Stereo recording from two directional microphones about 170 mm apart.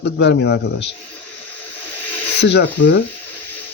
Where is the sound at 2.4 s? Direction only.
90° left.